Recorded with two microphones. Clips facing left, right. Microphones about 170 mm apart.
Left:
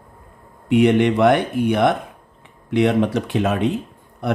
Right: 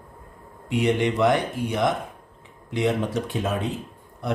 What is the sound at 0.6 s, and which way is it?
Speech, 65° left (ahead or behind).